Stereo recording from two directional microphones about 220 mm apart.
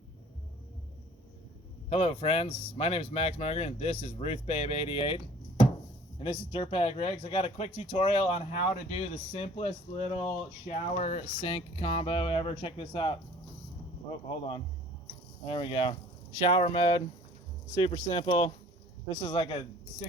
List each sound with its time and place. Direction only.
1.9 s speech: 25° left (ahead or behind)
15.4 s speech: 25° left (ahead or behind)